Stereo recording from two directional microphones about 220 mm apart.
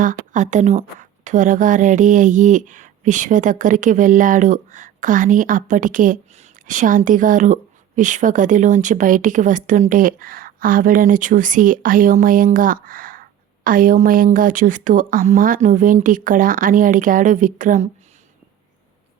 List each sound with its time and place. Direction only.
0.0 s a woman's voice: 35° right (ahead or behind)